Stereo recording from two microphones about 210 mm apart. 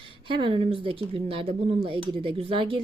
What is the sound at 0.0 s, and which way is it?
Speech, 25° right (ahead or behind).